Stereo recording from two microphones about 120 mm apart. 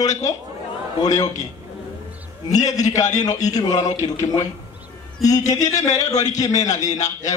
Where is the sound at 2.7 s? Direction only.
30° left (ahead or behind).